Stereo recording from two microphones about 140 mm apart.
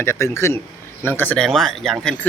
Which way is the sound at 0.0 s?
20° left (ahead or behind).